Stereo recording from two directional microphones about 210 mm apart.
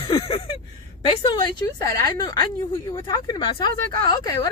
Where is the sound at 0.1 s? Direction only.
25° left (ahead or behind).